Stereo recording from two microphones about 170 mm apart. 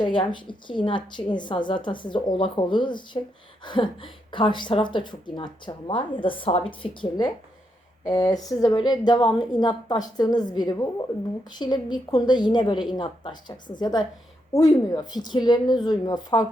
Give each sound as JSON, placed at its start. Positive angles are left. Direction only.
{"t": 0.0, "sound": "a woman's voice", "side_deg": 30}